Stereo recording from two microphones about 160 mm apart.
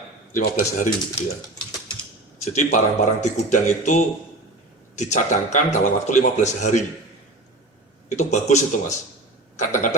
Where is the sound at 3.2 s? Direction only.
50° left (ahead or behind).